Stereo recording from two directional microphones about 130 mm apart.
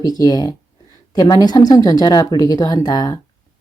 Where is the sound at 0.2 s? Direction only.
30° left (ahead or behind).